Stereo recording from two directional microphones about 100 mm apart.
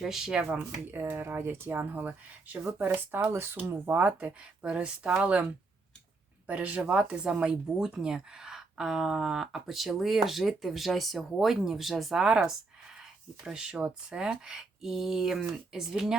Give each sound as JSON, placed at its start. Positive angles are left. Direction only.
{"t": 0.0, "sound": "a woman's voice", "side_deg": -5}
{"t": 0.9, "sound": "speech", "side_deg": -20}
{"t": 6.5, "sound": "a woman's voice", "side_deg": -15}